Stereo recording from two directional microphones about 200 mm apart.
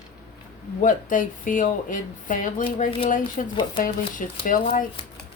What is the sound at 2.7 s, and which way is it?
Speech, 30° left (ahead or behind).